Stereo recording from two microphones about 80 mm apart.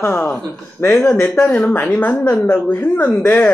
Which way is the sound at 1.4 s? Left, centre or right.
Centre.